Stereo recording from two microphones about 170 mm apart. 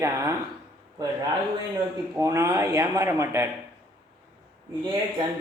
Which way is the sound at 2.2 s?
20° right (ahead or behind).